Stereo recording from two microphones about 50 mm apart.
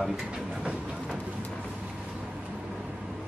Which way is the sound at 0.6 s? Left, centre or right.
Centre.